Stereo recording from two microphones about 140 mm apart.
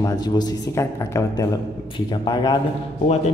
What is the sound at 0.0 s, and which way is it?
Speech, 30° left (ahead or behind).